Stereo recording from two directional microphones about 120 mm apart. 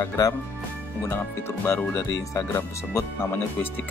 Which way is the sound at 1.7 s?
25° left (ahead or behind).